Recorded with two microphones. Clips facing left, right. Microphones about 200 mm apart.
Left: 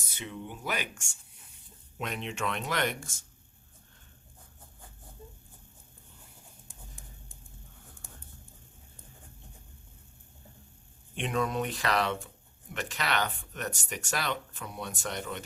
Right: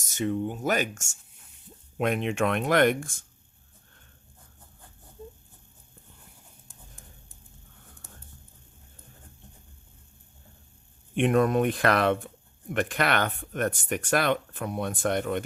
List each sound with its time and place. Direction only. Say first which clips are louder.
0.0 s speech: right 13 dB; 45° right (ahead or behind)
2.0 s speech: right 10 dB; 55° right (ahead or behind)
11.1 s speech: right 9 dB; 55° right (ahead or behind)